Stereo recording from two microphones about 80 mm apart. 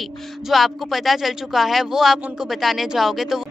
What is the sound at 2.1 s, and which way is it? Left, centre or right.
Speech, centre.